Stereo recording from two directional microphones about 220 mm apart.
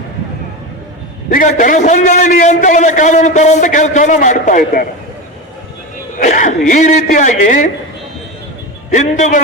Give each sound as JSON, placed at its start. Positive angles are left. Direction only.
{"t": 1.3, "sound": "a man's voice", "side_deg": 35}
{"t": 6.1, "sound": "a man's voice", "side_deg": 35}
{"t": 8.9, "sound": "a man's voice", "side_deg": 35}